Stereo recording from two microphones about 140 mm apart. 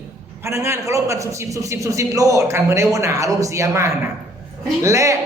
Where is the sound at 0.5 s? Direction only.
20° right (ahead or behind).